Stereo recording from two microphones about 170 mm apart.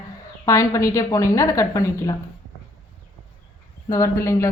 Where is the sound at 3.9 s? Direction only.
20° left (ahead or behind).